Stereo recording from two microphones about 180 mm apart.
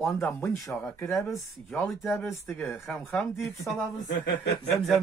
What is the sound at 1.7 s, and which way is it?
Speech, centre (ahead or behind).